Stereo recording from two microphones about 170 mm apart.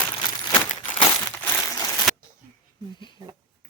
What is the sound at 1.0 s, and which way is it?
Crushing, 15° left (ahead or behind).